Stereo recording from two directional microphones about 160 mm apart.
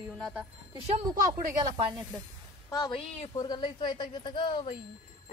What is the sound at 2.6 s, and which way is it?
A woman's voice, 25° left (ahead or behind).